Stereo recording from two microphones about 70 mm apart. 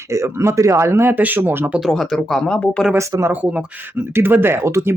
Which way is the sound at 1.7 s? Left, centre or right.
Centre.